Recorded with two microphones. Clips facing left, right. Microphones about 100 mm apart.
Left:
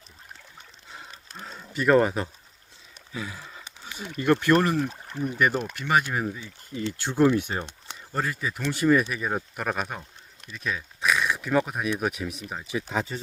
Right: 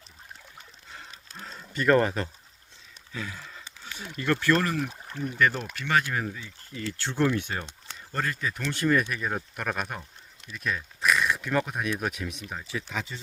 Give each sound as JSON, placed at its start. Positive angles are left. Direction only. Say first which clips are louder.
{"t": 1.4, "sound": "speech", "louder": "left 2 dB", "side_deg": 10}
{"t": 3.1, "sound": "a sound", "louder": "left 2 dB", "side_deg": 15}
{"t": 4.2, "sound": "speech", "louder": "left 4 dB", "side_deg": 20}
{"t": 12.9, "sound": "speech", "louder": "left 6 dB", "side_deg": 35}